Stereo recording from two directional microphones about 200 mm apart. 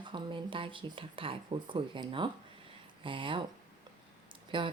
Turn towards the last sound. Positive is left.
turn(degrees=-25)  # may be behind; listen again after turning